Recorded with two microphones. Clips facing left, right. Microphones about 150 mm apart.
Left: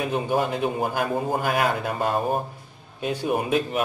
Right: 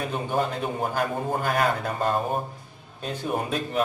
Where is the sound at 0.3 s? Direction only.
10° left (ahead or behind).